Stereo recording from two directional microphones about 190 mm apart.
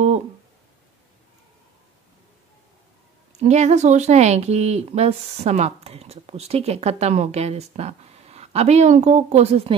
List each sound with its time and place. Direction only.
3.3 s speech: 35° right (ahead or behind)